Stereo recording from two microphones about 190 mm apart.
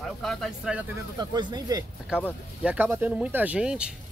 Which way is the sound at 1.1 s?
20° right (ahead or behind).